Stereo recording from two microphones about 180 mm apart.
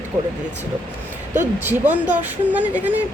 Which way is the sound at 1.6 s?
10° right (ahead or behind).